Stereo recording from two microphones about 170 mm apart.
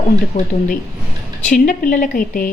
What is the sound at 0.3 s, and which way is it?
A woman's voice, 40° left (ahead or behind).